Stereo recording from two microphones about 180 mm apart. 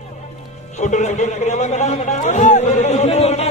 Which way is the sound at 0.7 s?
40° left (ahead or behind).